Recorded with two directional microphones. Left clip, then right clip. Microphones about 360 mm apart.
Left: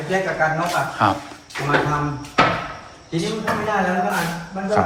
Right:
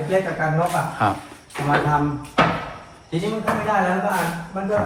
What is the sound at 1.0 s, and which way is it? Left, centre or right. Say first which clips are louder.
Speech: left 3 dB; centre.